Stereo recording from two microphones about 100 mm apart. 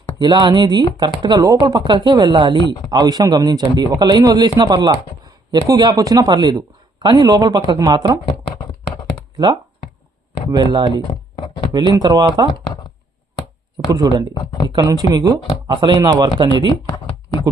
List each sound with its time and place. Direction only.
0.2 s speech: 50° right (ahead or behind)
10.5 s speech: 45° right (ahead or behind)
13.9 s speech: 40° right (ahead or behind)